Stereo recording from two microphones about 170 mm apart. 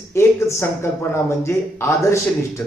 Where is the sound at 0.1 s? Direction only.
15° left (ahead or behind).